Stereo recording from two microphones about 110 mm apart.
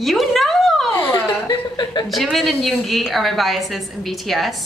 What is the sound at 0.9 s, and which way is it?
Speech, 25° left (ahead or behind).